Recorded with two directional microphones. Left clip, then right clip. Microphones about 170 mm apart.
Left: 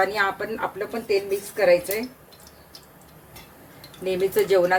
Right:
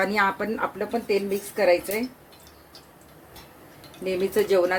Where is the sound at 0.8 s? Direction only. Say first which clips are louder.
Left 2 dB; 35° right (ahead or behind).